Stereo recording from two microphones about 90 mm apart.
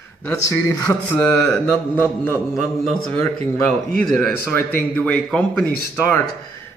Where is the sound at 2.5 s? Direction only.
Centre (ahead or behind).